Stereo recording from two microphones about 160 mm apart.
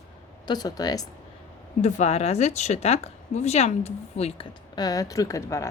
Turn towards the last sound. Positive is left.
turn(degrees=20)  # may be behind; listen again after turning